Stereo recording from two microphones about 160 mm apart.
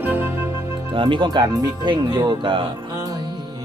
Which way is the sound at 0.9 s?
30° right (ahead or behind).